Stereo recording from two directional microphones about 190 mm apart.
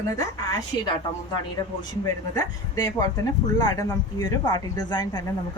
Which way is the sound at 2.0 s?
20° left (ahead or behind).